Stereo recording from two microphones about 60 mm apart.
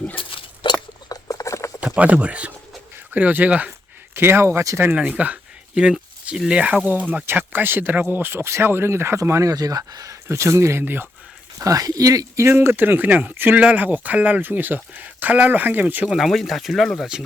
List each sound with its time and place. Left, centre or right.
1.0 s patter: left
1.8 s speech: right
4.1 s speech: right
4.9 s speech: centre
7.3 s speech: right
9.5 s speech: right
10.2 s speech: right
10.8 s speech: right
11.6 s speech: right
12.5 s speech: right
16.0 s speech: centre